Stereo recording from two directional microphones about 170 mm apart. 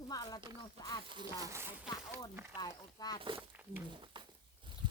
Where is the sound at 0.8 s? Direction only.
25° left (ahead or behind).